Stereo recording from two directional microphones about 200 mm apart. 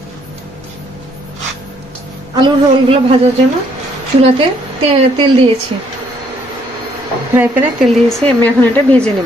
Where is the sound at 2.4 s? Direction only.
25° right (ahead or behind).